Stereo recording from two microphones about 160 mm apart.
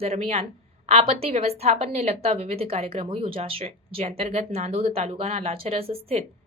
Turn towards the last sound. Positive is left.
turn(degrees=-40)  # may be behind; listen again after turning